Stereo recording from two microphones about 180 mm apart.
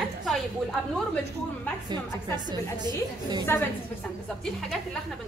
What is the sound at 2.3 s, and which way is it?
A woman's voice, 25° right (ahead or behind).